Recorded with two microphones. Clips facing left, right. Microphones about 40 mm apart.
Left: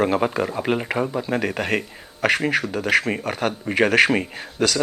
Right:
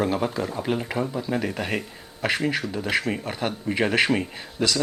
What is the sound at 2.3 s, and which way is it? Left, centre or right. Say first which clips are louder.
Speech: left 3 dB; left.